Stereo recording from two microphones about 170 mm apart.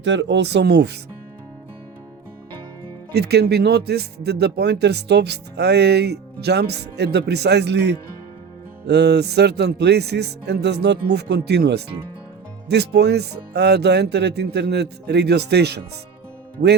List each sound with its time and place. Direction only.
0.0 s speech: 90° right
3.1 s speech: 75° right (ahead or behind)